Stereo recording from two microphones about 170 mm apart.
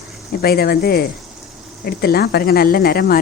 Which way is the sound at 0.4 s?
65° left (ahead or behind).